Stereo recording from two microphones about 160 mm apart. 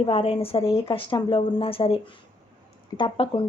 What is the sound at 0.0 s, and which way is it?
A woman's voice, 35° left (ahead or behind).